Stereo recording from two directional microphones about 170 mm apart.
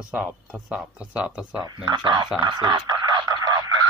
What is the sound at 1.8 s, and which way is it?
Speech, 25° right (ahead or behind).